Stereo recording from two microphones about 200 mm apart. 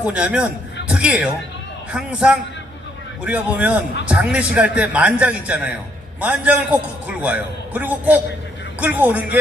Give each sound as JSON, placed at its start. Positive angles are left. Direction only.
{"t": 0.0, "sound": "a man's voice", "side_deg": -5}